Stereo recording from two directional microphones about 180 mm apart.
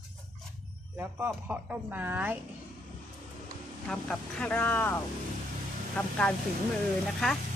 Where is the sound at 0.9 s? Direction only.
10° right (ahead or behind).